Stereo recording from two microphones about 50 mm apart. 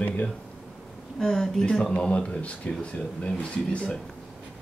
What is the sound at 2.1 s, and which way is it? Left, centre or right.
Speech, left.